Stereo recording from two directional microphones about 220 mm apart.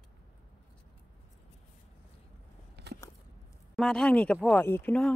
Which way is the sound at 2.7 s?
50° right (ahead or behind).